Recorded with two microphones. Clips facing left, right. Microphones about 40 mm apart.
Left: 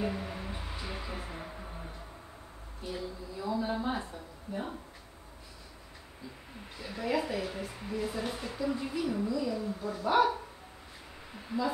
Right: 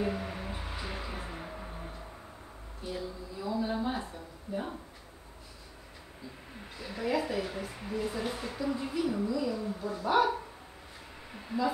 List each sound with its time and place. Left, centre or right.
0.0 s music: centre
0.6 s music: centre
0.8 s music: centre
2.9 s a sound: centre
6.8 s a woman's voice: centre